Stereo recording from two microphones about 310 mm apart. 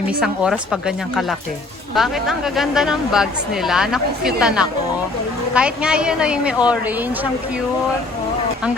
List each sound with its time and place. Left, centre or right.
0.2 s a woman's voice: centre